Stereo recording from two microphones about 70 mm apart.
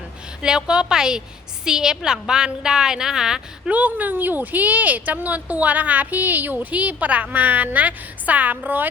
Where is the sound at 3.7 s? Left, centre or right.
Right.